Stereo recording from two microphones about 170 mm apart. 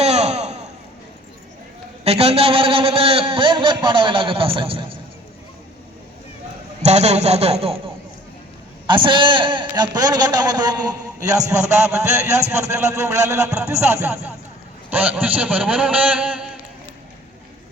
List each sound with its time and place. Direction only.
0.0 s a sound: 40° right (ahead or behind)
2.0 s a man's voice: 35° right (ahead or behind)
6.8 s a man's voice: 40° right (ahead or behind)
8.9 s a man's voice: 30° right (ahead or behind); by 16.5 s 5° right (ahead or behind)